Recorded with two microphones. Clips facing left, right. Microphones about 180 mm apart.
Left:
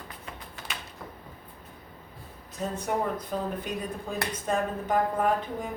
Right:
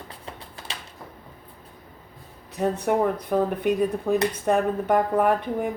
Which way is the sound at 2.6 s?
70° right (ahead or behind).